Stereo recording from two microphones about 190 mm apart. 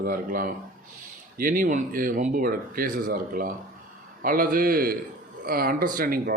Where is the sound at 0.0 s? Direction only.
50° right (ahead or behind).